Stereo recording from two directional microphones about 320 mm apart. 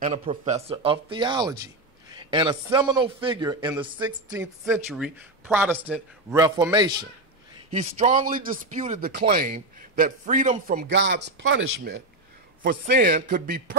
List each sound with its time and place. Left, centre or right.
0.0 s speech: centre